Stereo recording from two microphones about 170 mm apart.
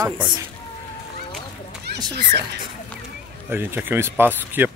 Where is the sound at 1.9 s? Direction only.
75° right (ahead or behind).